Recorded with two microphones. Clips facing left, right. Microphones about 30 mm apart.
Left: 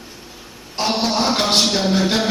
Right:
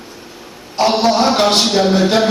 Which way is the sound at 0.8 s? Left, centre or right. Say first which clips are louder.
Right 6 dB; centre.